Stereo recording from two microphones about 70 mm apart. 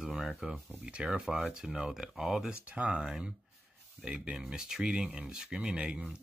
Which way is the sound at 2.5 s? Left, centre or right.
Centre.